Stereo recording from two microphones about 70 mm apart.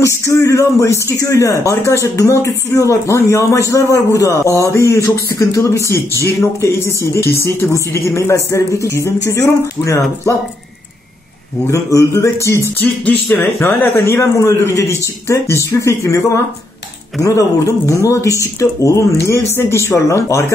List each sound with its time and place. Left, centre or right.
0.0 s speech: left
11.6 s speech: left
13.0 s speech: left
13.6 s speech: left